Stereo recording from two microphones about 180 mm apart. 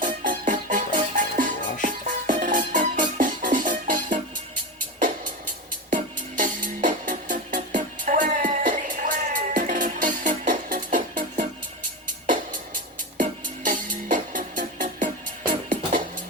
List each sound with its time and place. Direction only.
0.0 s music: 45° right (ahead or behind)
5.9 s music: 45° right (ahead or behind)
13.7 s music: 45° right (ahead or behind)